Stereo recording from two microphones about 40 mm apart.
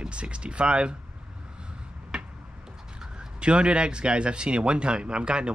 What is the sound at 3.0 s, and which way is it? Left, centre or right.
Speech, right.